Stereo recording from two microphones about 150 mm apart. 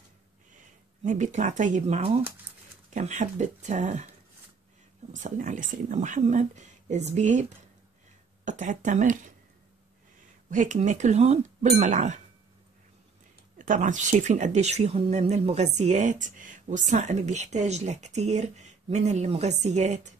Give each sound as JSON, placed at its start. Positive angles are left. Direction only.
{"t": 0.5, "sound": "a sound", "side_deg": -55}
{"t": 2.9, "sound": "speech", "side_deg": -50}
{"t": 5.1, "sound": "speech", "side_deg": -55}
{"t": 10.5, "sound": "speech", "side_deg": -55}
{"t": 13.6, "sound": "speech", "side_deg": -55}